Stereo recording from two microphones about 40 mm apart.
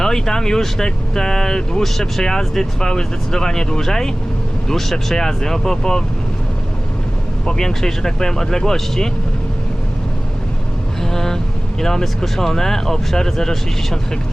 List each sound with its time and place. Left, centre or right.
0.0 s speech: centre
7.4 s speech: centre
11.0 s vehicle: centre
11.8 s speech: centre